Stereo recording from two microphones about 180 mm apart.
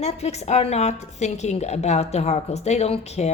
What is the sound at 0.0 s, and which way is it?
A woman's voice, 35° left (ahead or behind).